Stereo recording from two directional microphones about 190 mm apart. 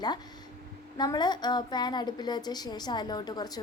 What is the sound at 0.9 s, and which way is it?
A woman's voice, 20° left (ahead or behind).